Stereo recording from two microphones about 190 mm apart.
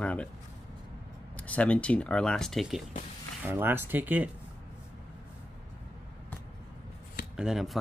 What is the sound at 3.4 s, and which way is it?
Speech, 10° right (ahead or behind).